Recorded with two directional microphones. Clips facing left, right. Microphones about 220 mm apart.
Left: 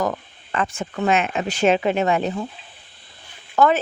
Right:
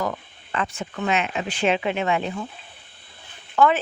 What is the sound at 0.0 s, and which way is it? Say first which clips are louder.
Speech: left 4 dB; 45° left (ahead or behind).